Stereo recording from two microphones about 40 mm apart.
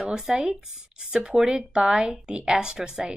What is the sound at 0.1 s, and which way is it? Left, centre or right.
Speech, centre.